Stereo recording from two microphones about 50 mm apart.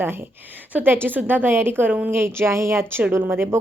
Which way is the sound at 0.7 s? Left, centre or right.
Right.